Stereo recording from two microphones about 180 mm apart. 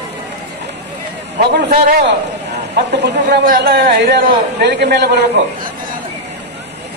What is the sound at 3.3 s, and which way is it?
Speech, 55° right (ahead or behind).